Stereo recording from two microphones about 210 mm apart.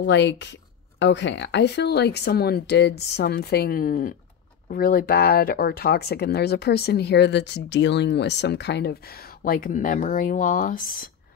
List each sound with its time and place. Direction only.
0.0 s speech: 60° left (ahead or behind)
9.4 s speech: 40° left (ahead or behind)